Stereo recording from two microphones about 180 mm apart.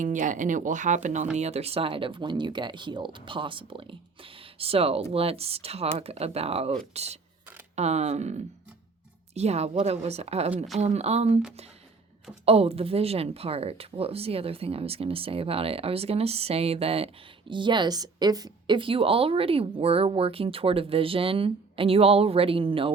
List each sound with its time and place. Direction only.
0.0 s a woman's voice: 45° right (ahead or behind)
12.5 s a woman's voice: 35° right (ahead or behind)